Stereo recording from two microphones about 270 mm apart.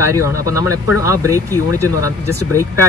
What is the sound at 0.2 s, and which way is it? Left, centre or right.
Speech, centre.